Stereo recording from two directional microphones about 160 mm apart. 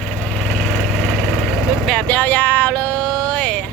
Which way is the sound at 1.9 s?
5° left (ahead or behind).